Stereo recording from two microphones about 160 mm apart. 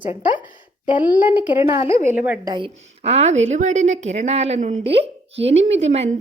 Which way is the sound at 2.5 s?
30° right (ahead or behind).